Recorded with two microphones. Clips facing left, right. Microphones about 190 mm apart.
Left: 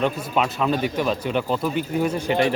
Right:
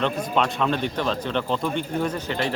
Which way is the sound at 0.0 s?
5° left (ahead or behind).